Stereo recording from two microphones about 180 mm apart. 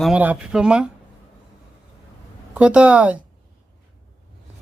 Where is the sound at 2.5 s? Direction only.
5° right (ahead or behind).